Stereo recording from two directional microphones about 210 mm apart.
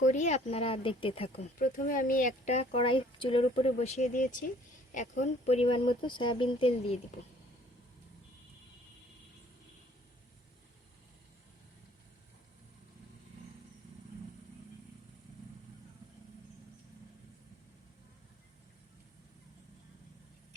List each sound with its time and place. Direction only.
0.0 s speech: 35° left (ahead or behind)